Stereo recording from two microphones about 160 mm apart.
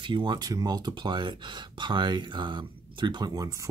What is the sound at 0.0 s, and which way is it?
Speech, 30° right (ahead or behind).